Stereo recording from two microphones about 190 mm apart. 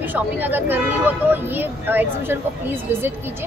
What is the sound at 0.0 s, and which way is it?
A woman's voice, 10° right (ahead or behind).